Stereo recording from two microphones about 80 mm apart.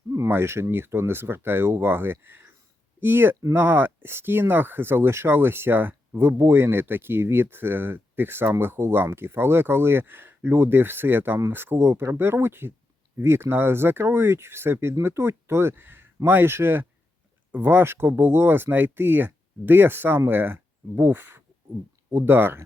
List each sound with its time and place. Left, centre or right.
0.1 s speech: right